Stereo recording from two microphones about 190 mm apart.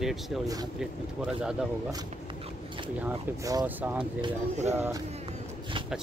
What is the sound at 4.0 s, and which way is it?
Speech, 30° right (ahead or behind).